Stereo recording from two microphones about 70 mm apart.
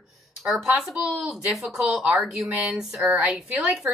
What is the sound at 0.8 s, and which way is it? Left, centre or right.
A woman's voice, centre.